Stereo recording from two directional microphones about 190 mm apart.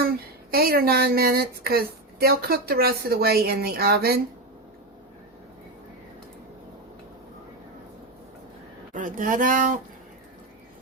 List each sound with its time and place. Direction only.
0.5 s speech: 50° right (ahead or behind)
8.9 s speech: 45° right (ahead or behind)